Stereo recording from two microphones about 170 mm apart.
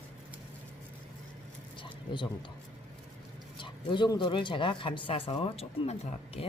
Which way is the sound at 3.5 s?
30° left (ahead or behind).